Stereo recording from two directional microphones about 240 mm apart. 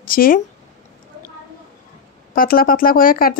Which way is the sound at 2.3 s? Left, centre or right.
Left.